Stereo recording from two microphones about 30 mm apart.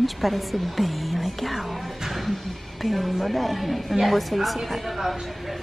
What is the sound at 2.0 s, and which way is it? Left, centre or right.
A woman's voice, centre.